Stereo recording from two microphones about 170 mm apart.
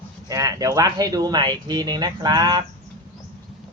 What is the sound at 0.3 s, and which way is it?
Speech, 20° right (ahead or behind).